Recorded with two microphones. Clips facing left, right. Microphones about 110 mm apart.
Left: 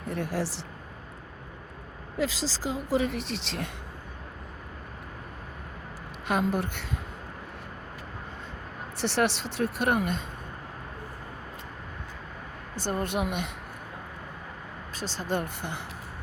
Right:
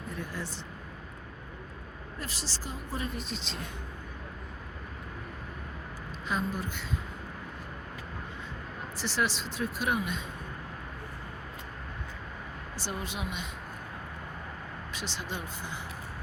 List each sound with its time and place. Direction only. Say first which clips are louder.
0.1 s speech: left 9 dB; 75° left (ahead or behind)
2.1 s speech: left 12 dB; 90° left; by 3.7 s 70° left (ahead or behind)
6.2 s speech: left 6 dB; 70° left (ahead or behind)
9.0 s speech: left 5 dB; 65° left (ahead or behind)
12.8 s speech: left 8 dB; 50° left (ahead or behind)
14.9 s speech: left 8 dB; 40° left (ahead or behind); by 15.8 s 60° left (ahead or behind)